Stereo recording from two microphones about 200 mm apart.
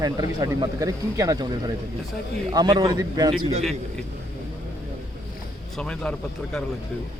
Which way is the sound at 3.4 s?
30° right (ahead or behind).